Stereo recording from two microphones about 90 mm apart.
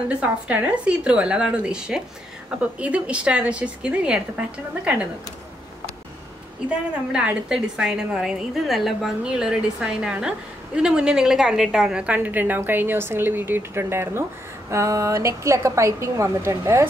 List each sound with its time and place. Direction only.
0.1 s a woman's voice: 15° right (ahead or behind)
7.1 s a woman's voice: 10° right (ahead or behind); by 16.8 s 30° right (ahead or behind)